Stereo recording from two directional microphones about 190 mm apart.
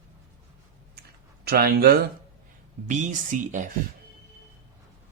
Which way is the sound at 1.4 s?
55° right (ahead or behind).